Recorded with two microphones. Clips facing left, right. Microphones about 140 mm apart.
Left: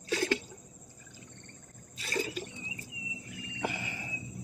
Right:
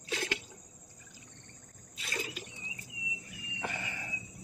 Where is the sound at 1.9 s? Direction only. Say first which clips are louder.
Left 6 dB; 45° left (ahead or behind).